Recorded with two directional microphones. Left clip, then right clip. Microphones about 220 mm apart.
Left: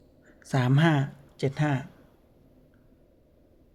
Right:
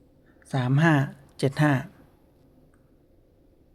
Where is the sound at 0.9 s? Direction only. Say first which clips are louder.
Right 4 dB; 15° right (ahead or behind).